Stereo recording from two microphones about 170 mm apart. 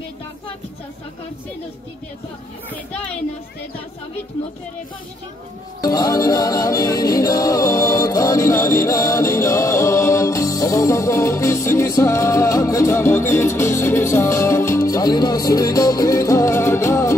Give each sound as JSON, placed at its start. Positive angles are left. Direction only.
{"t": 5.8, "sound": "music", "side_deg": 20}